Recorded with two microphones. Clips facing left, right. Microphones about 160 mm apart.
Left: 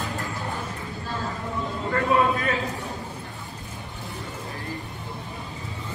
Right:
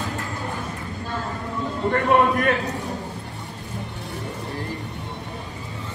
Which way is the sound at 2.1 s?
70° right (ahead or behind).